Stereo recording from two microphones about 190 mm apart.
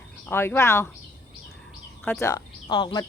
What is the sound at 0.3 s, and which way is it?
Speech, 10° left (ahead or behind).